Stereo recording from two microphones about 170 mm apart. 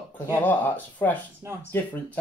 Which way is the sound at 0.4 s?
10° left (ahead or behind).